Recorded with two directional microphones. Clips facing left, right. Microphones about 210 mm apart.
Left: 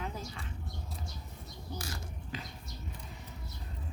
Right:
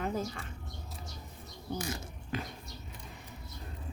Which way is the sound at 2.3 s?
55° right (ahead or behind).